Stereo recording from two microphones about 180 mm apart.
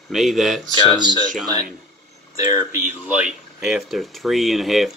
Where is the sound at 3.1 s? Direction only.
5° right (ahead or behind).